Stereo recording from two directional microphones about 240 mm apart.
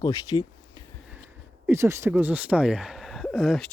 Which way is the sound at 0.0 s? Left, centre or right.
Centre.